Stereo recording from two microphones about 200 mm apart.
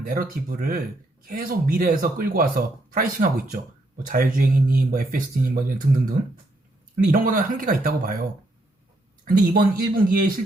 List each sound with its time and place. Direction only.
0.0 s speech: 45° right (ahead or behind)